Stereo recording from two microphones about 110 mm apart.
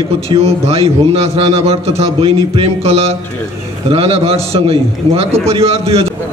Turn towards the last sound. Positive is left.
turn(degrees=-65)  # may be behind; listen again after turning